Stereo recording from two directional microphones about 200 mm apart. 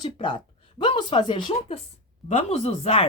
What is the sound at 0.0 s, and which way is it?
A woman's voice, 25° left (ahead or behind).